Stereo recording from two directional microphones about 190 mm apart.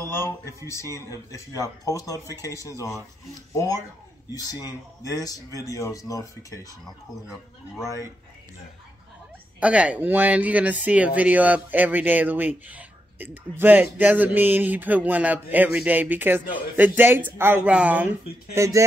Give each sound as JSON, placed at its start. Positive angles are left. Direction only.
{"t": 0.1, "sound": "speech", "side_deg": 10}
{"t": 4.3, "sound": "speech", "side_deg": 20}
{"t": 7.8, "sound": "speech", "side_deg": 15}
{"t": 9.6, "sound": "speech", "side_deg": -5}